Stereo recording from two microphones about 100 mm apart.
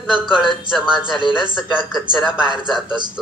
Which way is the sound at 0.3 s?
55° left (ahead or behind).